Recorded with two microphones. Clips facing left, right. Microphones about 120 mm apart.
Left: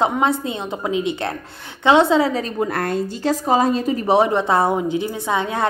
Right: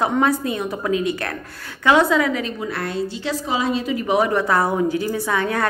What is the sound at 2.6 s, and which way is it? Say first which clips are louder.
A woman's voice: left 4 dB; 50° left (ahead or behind).